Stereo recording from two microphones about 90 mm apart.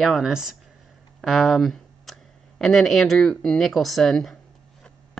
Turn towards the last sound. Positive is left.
turn(degrees=5)  # may be behind; listen again after turning